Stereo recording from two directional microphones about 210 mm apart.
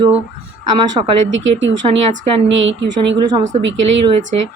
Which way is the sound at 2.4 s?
60° right (ahead or behind).